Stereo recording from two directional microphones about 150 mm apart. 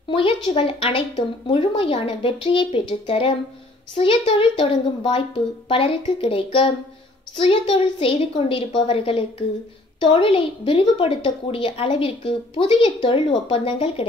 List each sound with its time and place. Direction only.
0.1 s a woman's voice: 35° left (ahead or behind)